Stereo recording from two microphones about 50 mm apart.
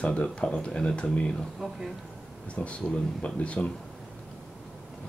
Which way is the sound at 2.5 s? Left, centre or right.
Left.